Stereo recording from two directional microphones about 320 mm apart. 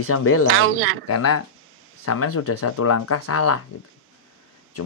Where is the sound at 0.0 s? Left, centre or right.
Left.